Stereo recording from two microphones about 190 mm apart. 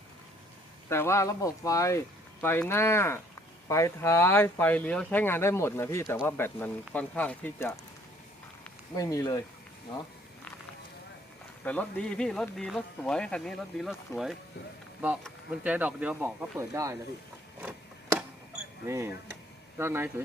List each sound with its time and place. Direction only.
0.9 s speech: 15° left (ahead or behind)
9.0 s speech: 20° left (ahead or behind)
11.6 s speech: 5° left (ahead or behind)
15.6 s speech: 10° right (ahead or behind)
17.6 s a sound: 10° right (ahead or behind)
18.9 s speech: 15° right (ahead or behind)